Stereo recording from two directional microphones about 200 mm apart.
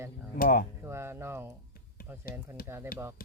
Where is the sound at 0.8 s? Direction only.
15° right (ahead or behind).